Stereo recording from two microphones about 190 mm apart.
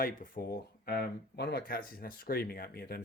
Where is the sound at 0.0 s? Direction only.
50° left (ahead or behind).